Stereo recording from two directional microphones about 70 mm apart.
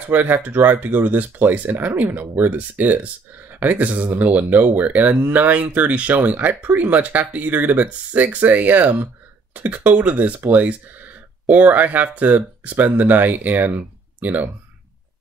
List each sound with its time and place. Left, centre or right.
0.1 s speech: right